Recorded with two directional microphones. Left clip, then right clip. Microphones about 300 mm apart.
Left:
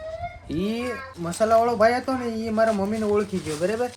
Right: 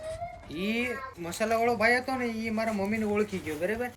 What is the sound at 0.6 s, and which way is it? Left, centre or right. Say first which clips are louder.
Speech: left 3 dB; centre.